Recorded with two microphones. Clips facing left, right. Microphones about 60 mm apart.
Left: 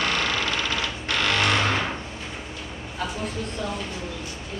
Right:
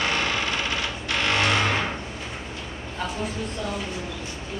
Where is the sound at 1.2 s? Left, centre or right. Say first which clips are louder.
Even; right.